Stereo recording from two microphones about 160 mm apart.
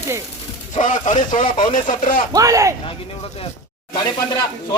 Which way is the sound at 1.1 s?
50° left (ahead or behind).